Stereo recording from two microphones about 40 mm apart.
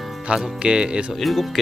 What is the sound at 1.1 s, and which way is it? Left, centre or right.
Speech, centre.